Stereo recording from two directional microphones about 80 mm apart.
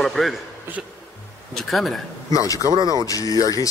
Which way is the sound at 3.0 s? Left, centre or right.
Left.